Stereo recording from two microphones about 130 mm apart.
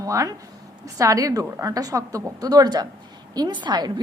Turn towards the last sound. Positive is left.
turn(degrees=-35)  # may be behind; listen again after turning